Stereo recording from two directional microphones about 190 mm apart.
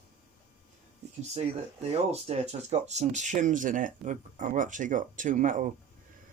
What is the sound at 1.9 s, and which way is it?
Speech, 35° right (ahead or behind).